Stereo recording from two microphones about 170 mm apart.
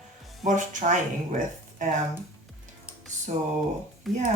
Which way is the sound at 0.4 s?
45° right (ahead or behind).